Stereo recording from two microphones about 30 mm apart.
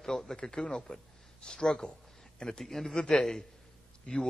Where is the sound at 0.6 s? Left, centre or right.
Left.